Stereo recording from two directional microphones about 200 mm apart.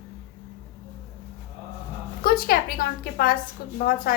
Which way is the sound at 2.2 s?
50° left (ahead or behind).